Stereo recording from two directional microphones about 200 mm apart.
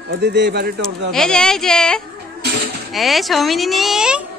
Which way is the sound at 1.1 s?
5° left (ahead or behind).